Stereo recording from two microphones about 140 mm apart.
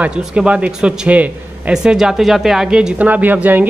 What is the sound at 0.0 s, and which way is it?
A man's voice, 5° right (ahead or behind).